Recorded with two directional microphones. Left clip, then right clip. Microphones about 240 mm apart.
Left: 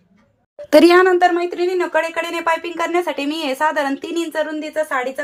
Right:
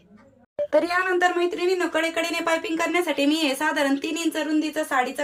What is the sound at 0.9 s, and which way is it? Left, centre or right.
Speech, left.